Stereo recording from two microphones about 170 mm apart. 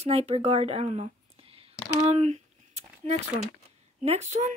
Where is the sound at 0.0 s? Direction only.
35° right (ahead or behind).